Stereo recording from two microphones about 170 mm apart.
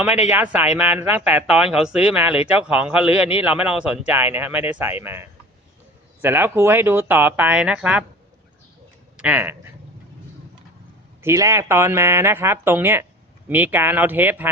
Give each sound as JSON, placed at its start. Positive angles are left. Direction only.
{"t": 0.0, "sound": "a man's voice", "side_deg": -10}
{"t": 9.1, "sound": "speech", "side_deg": -10}
{"t": 11.2, "sound": "a man's voice", "side_deg": -15}